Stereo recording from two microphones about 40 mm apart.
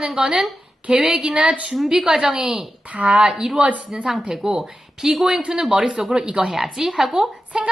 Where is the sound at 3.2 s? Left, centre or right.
Right.